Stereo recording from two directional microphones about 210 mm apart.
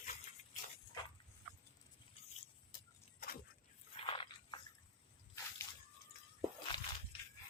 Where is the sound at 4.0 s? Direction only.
25° left (ahead or behind).